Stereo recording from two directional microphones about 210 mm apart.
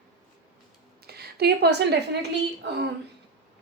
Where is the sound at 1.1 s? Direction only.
50° right (ahead or behind).